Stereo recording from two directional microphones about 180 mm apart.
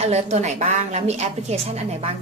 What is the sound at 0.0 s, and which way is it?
A woman's voice, 40° right (ahead or behind).